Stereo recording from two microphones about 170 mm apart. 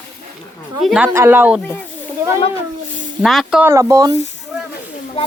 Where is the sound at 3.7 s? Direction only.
20° right (ahead or behind).